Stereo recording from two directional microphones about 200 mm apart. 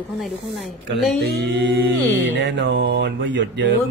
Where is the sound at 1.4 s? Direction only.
65° right (ahead or behind).